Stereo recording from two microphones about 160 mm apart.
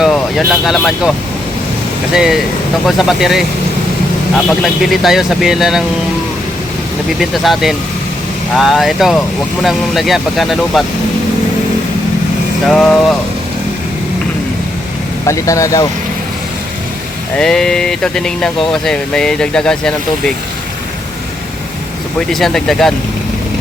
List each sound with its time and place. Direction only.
0.0 s speech: centre (ahead or behind)
2.1 s speech: 5° right (ahead or behind)
4.6 s speech: centre (ahead or behind)
7.2 s speech: centre (ahead or behind)
12.7 s speech: 5° left (ahead or behind)
15.3 s speech: 20° left (ahead or behind)
17.3 s speech: 5° left (ahead or behind)
22.3 s speech: centre (ahead or behind)